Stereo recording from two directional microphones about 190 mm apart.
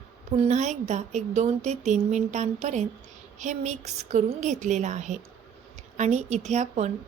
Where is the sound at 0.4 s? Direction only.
40° right (ahead or behind).